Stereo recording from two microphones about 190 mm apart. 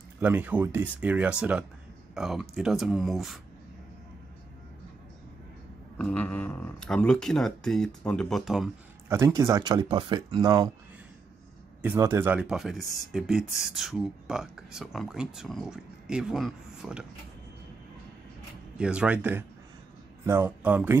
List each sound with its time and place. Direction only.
0.2 s speech: 10° right (ahead or behind)
5.9 s speech: 5° left (ahead or behind)
9.1 s speech: 15° right (ahead or behind)
11.8 s speech: 10° right (ahead or behind)
18.8 s speech: 5° right (ahead or behind)